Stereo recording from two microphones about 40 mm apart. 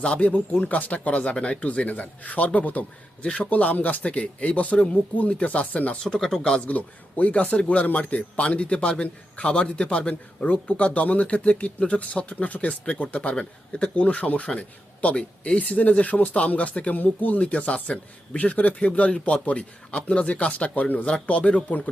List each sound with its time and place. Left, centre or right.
0.0 s a man's voice: left
3.5 s speech: left
6.0 s speech: centre
6.6 s a man's voice: left
17.5 s speech: left